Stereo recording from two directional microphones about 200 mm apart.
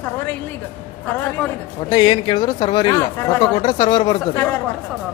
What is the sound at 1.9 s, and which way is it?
Speech, 20° left (ahead or behind).